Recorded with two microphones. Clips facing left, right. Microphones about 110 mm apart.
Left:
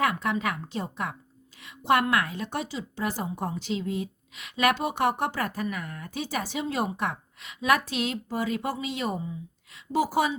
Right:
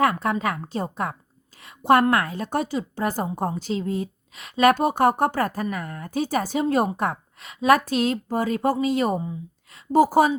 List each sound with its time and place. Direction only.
0.0 s a woman's voice: 40° right (ahead or behind)